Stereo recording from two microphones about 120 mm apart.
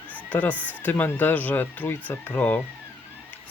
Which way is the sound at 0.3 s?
15° left (ahead or behind).